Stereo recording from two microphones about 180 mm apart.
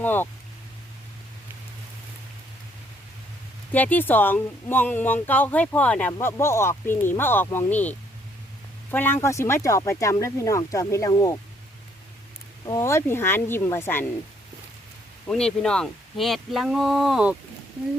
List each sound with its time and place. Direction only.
0.0 s speech: 10° left (ahead or behind)
3.7 s speech: 10° left (ahead or behind)
12.6 s speech: 20° left (ahead or behind)
15.3 s speech: 5° left (ahead or behind)